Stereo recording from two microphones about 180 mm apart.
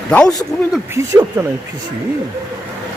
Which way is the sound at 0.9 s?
15° right (ahead or behind).